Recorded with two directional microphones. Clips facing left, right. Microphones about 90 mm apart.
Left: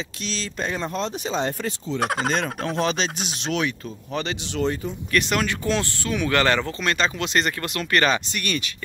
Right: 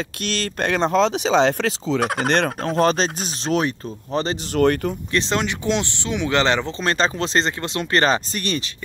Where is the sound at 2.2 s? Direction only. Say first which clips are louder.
Right 5 dB; 60° right (ahead or behind).